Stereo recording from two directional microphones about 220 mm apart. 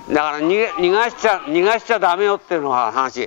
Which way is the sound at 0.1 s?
15° left (ahead or behind).